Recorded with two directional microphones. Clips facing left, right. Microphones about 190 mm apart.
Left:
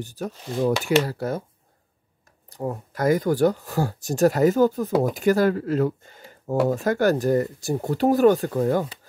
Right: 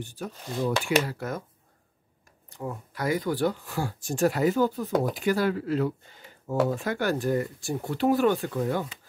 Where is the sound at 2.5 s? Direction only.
40° left (ahead or behind).